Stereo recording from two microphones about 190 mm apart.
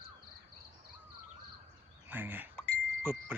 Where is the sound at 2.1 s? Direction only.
10° right (ahead or behind).